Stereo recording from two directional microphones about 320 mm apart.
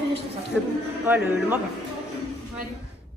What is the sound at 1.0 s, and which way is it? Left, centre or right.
Speech, centre.